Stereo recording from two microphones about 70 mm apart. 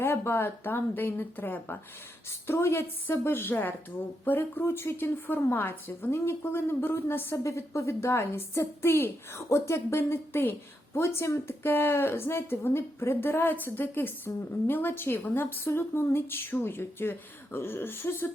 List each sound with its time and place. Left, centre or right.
0.0 s a woman's voice: left